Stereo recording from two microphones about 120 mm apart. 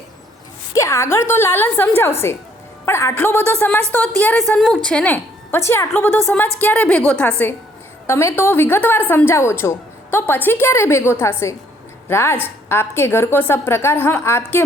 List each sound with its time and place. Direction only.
0.7 s a woman's voice: 25° left (ahead or behind)
8.0 s a woman's voice: 25° left (ahead or behind)